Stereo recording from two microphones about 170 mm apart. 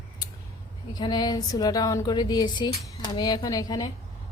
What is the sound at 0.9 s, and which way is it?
Speech, 25° left (ahead or behind).